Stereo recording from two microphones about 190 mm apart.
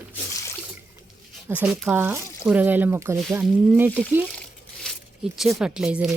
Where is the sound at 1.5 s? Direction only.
5° right (ahead or behind).